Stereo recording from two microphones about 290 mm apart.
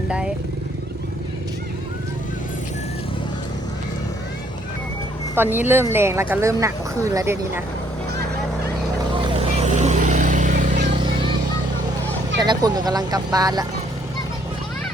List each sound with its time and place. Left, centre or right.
5.3 s speech: centre
9.4 s vehicle: right
12.4 s speech: centre